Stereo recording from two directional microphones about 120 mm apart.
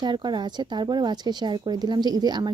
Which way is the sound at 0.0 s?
35° right (ahead or behind).